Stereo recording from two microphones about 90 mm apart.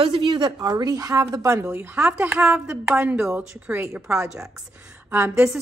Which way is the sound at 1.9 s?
15° right (ahead or behind).